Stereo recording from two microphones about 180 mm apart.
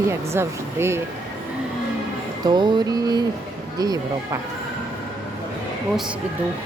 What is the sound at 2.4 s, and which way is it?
Music, 25° right (ahead or behind).